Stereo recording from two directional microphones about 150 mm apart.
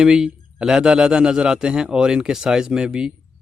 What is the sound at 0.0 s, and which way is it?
Speech, 5° right (ahead or behind).